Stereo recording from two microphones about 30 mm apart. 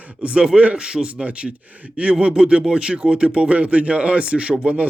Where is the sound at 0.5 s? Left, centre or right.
Right.